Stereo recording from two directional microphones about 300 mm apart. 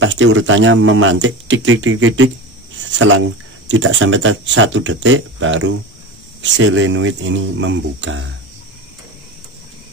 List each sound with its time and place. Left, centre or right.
0.0 s speech: right